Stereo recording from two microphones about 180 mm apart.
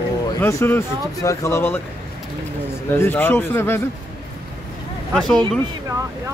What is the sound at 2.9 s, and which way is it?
Speech, 10° left (ahead or behind).